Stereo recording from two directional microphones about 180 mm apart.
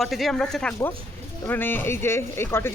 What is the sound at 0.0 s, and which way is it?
Speech, centre (ahead or behind).